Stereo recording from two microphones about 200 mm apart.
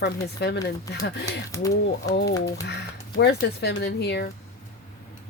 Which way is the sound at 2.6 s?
55° left (ahead or behind).